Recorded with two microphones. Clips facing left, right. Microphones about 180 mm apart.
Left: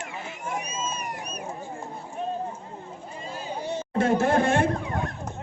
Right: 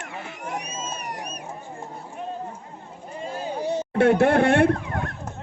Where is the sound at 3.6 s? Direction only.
40° right (ahead or behind).